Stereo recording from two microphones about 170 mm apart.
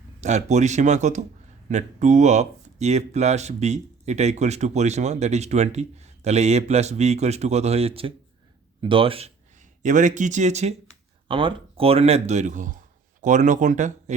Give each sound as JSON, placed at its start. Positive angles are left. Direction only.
{"t": 0.2, "sound": "speech", "side_deg": -45}
{"t": 11.3, "sound": "speech", "side_deg": -30}